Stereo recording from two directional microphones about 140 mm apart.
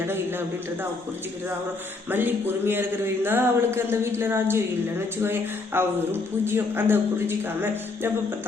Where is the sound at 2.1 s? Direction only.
15° right (ahead or behind).